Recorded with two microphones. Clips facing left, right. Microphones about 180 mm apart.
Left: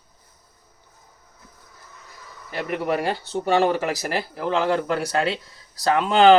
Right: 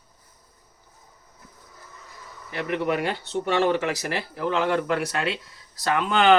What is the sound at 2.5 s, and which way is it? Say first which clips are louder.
Speech: left 1 dB; 35° left (ahead or behind).